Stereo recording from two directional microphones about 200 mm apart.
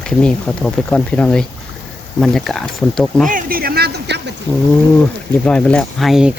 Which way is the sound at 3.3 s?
45° right (ahead or behind).